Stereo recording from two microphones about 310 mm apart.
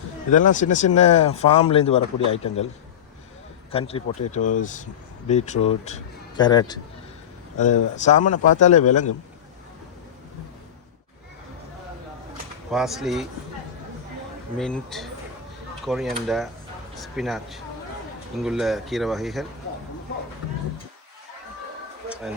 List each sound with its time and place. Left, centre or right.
0.3 s a man's voice: left
3.7 s a man's voice: centre
7.9 s a man's voice: left
12.7 s speech: centre
14.6 s speech: centre